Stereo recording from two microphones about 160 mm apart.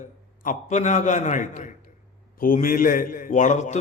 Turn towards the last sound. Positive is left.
turn(degrees=50)  # may be behind; listen again after turning